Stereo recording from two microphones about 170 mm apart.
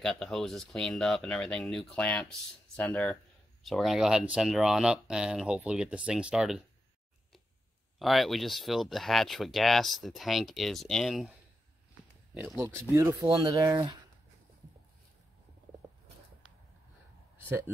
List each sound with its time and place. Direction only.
0.0 s speech: 5° left (ahead or behind)
8.0 s speech: centre (ahead or behind)
12.5 s speech: 15° right (ahead or behind)
15.8 s a sound: 10° right (ahead or behind)